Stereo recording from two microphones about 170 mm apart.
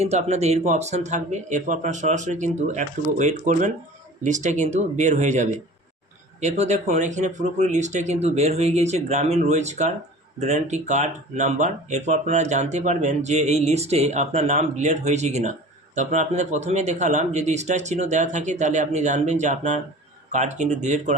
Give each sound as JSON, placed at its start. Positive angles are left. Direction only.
{"t": 0.0, "sound": "speech", "side_deg": -40}